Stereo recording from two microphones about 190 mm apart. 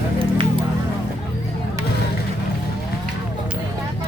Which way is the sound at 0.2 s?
30° right (ahead or behind).